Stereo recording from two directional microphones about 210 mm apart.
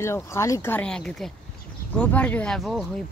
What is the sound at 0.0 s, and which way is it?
Speech, 15° left (ahead or behind).